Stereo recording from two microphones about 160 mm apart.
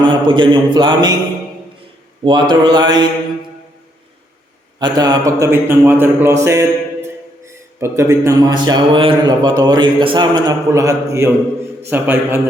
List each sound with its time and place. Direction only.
0.0 s speech: 30° right (ahead or behind)
2.2 s speech: 30° right (ahead or behind)
4.8 s a man's voice: 25° right (ahead or behind)
6.4 s mantra: 20° right (ahead or behind)
7.8 s a man's voice: 15° right (ahead or behind)